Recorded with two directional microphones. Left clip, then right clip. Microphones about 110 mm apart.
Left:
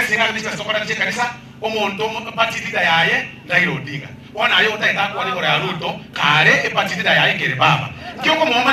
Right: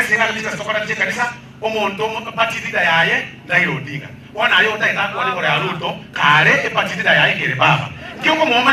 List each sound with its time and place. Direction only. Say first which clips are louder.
0.0 s a man's voice: right 1 dB; 20° left (ahead or behind)